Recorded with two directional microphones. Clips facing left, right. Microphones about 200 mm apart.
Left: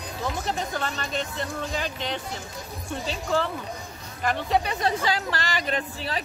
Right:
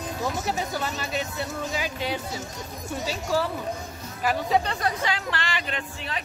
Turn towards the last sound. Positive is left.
turn(degrees=35)  # may be behind; listen again after turning